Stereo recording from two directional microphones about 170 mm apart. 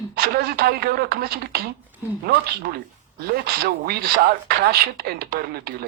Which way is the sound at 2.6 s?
65° right (ahead or behind).